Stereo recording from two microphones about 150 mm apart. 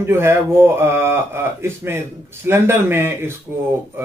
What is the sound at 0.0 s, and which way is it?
Speech, 15° right (ahead or behind).